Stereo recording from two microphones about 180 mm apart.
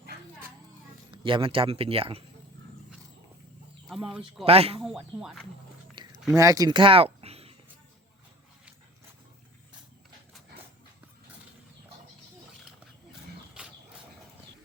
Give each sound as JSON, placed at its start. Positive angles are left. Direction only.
{"t": 1.1, "sound": "speech", "side_deg": -30}
{"t": 3.8, "sound": "speech", "side_deg": 0}
{"t": 4.4, "sound": "speech", "side_deg": -35}
{"t": 4.8, "sound": "speech", "side_deg": 0}
{"t": 5.9, "sound": "a sound", "side_deg": -20}
{"t": 13.5, "sound": "a sound", "side_deg": -5}